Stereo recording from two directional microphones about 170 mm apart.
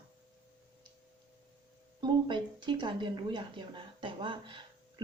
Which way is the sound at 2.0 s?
25° right (ahead or behind).